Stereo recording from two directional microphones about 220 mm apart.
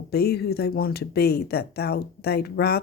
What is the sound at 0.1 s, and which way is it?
Speech, 45° left (ahead or behind).